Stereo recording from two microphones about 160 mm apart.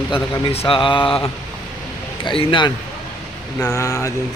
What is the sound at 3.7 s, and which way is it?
Speech, 20° left (ahead or behind).